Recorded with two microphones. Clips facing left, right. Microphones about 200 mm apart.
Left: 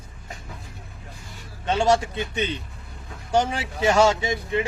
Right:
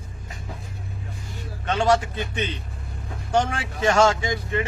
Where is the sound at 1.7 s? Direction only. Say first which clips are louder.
Even; 10° left (ahead or behind).